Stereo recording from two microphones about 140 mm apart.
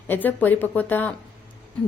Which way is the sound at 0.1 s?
15° left (ahead or behind).